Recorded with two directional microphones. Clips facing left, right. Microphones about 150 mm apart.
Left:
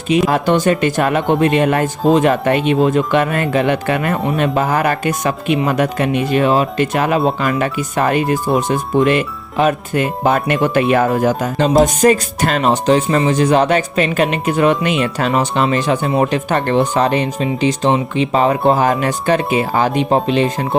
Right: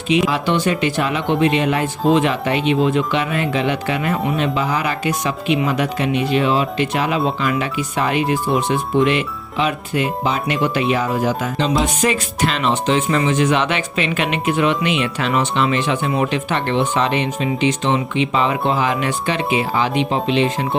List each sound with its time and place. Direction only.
0.3 s speech: 45° left (ahead or behind)